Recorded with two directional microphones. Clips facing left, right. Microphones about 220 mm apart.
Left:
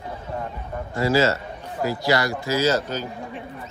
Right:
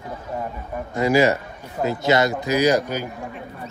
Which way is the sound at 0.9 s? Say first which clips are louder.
Right 2 dB; 15° right (ahead or behind).